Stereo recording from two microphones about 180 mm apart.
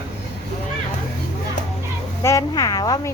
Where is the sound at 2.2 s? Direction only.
20° left (ahead or behind).